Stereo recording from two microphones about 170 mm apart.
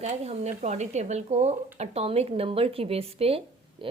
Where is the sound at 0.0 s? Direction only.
40° right (ahead or behind).